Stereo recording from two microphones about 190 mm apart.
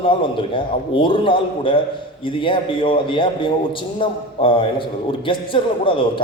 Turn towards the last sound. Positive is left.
turn(degrees=25)  # may be behind; listen again after turning